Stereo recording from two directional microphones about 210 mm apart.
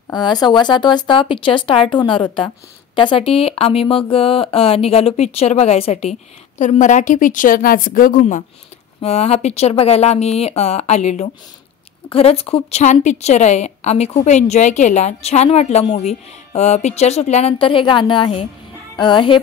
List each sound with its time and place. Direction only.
0.1 s a woman's voice: 20° left (ahead or behind)